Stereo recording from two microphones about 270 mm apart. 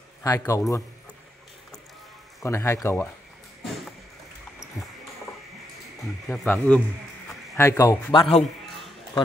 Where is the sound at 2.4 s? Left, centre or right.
Centre.